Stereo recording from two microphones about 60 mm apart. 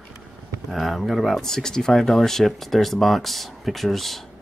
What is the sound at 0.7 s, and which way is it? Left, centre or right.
Speech, centre.